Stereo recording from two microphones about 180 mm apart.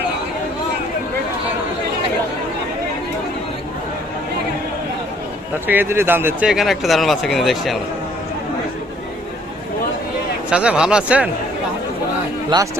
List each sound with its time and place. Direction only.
5.6 s speech: 10° right (ahead or behind)
10.5 s speech: 5° right (ahead or behind)
12.5 s speech: 25° right (ahead or behind)